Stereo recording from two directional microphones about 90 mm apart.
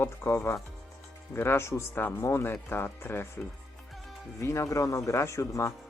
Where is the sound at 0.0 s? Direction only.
30° left (ahead or behind).